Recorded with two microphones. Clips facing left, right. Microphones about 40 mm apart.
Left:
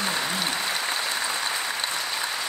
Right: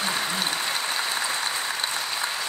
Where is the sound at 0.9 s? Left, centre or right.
Centre.